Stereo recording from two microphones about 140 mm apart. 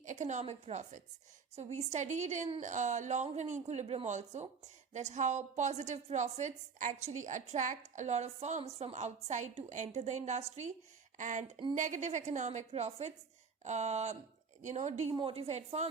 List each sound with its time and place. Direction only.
0.0 s a woman's voice: 60° right (ahead or behind)
15.1 s a woman's voice: 40° right (ahead or behind)